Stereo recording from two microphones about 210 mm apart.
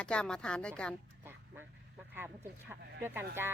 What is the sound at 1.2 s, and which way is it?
Vehicle, 10° right (ahead or behind).